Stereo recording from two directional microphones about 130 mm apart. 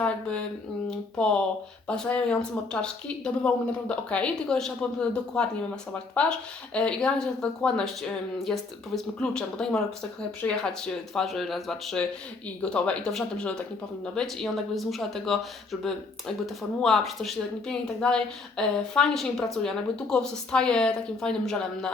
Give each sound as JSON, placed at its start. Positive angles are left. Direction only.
{"t": 0.0, "sound": "a woman's voice", "side_deg": 10}
{"t": 16.8, "sound": "a woman's voice", "side_deg": 0}